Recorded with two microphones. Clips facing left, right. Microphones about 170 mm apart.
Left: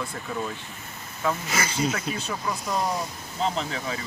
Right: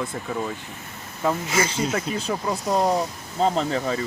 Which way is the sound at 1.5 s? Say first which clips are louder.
Right 3 dB; 30° right (ahead or behind).